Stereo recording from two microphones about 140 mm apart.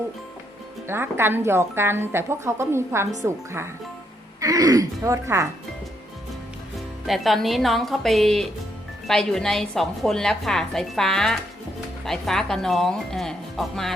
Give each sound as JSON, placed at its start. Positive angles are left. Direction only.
{"t": 0.9, "sound": "a woman's voice", "side_deg": -15}
{"t": 7.1, "sound": "a woman's voice", "side_deg": 0}